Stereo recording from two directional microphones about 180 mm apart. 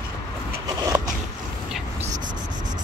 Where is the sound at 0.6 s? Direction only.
20° right (ahead or behind).